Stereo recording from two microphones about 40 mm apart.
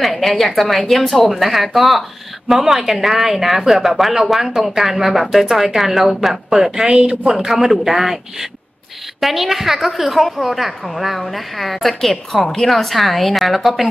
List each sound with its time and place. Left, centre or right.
0.0 s speech: centre
6.5 s a man's voice: centre
6.9 s speech: right
7.2 s a man's voice: centre